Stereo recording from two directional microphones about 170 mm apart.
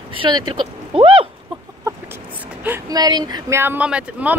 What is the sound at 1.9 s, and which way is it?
Chicken, 20° right (ahead or behind).